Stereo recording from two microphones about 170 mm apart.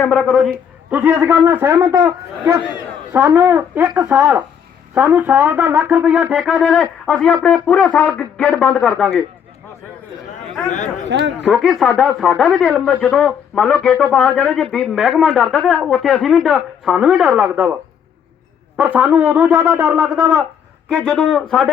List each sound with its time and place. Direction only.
0.0 s a man's voice: 5° left (ahead or behind)
0.9 s a man's voice: 10° right (ahead or behind)
11.1 s a man's voice: 90° right
11.4 s a man's voice: centre (ahead or behind)
18.8 s a man's voice: 10° right (ahead or behind)
20.9 s a man's voice: 5° left (ahead or behind)